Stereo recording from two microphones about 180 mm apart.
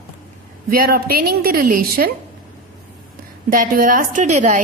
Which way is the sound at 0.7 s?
55° right (ahead or behind).